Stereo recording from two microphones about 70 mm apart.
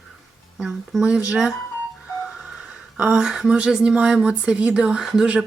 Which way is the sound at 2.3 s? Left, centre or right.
Centre.